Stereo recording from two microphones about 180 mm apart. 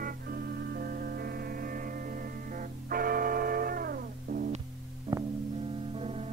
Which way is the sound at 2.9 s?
55° right (ahead or behind).